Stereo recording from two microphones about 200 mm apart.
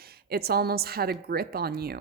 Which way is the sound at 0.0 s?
50° right (ahead or behind).